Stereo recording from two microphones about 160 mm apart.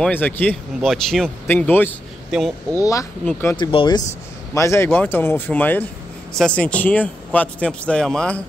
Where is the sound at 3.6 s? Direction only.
30° left (ahead or behind).